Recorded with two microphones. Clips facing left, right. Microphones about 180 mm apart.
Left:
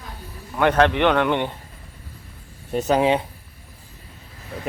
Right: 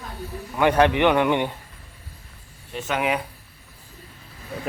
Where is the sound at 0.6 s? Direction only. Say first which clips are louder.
Even; 10° right (ahead or behind).